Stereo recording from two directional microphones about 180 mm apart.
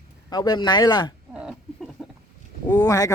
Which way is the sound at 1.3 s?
5° right (ahead or behind).